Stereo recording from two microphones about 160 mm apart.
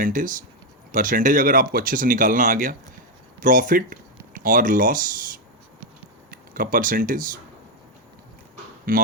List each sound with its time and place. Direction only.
0.0 s speech: 55° right (ahead or behind)
8.9 s speech: 60° right (ahead or behind)